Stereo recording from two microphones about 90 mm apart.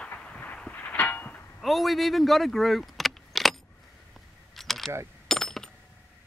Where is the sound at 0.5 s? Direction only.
15° left (ahead or behind).